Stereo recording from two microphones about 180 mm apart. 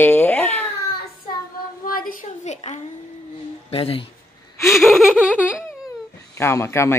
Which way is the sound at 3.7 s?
30° left (ahead or behind).